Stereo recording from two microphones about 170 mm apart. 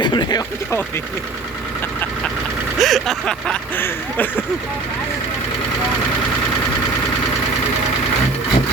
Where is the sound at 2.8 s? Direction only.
Centre (ahead or behind).